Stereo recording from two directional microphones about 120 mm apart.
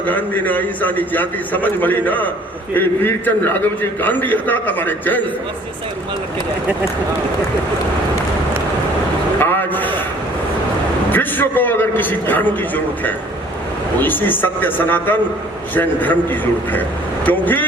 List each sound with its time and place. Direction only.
0.0 s a man's voice: 15° left (ahead or behind)
9.4 s a sound: 15° left (ahead or behind)
11.1 s a man's voice: 15° left (ahead or behind)